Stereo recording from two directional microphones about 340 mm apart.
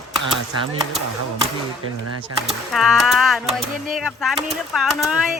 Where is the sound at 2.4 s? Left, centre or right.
Centre.